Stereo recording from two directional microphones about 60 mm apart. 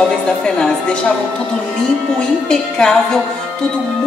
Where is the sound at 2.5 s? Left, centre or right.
Centre.